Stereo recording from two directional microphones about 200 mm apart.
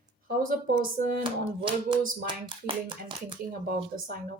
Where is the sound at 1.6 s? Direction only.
25° right (ahead or behind).